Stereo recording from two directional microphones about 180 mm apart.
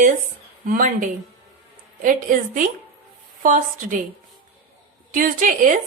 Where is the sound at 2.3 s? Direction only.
45° right (ahead or behind).